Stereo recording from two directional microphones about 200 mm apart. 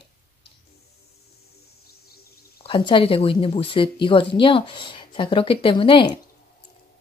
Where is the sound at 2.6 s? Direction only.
25° left (ahead or behind).